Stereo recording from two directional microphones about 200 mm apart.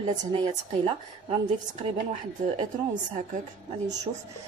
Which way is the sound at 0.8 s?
30° right (ahead or behind).